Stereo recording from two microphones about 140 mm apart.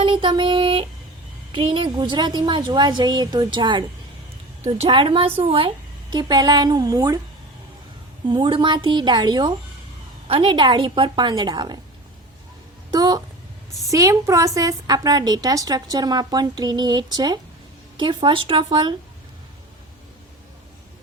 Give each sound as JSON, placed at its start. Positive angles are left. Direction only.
{"t": 0.0, "sound": "a sound", "side_deg": -35}
{"t": 1.5, "sound": "a woman's voice", "side_deg": -35}
{"t": 8.3, "sound": "a woman's voice", "side_deg": -35}
{"t": 12.9, "sound": "a woman's voice", "side_deg": -25}